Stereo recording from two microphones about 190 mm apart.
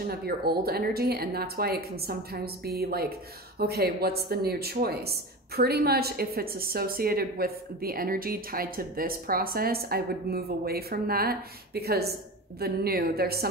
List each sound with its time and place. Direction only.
0.0 s speech: 55° right (ahead or behind)